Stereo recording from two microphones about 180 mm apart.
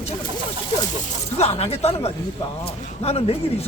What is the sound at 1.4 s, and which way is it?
Speech, 35° left (ahead or behind).